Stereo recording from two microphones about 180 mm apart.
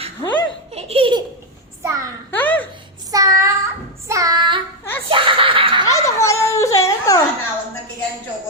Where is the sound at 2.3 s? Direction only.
10° left (ahead or behind).